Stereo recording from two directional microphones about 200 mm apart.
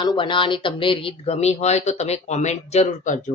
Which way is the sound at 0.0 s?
25° left (ahead or behind).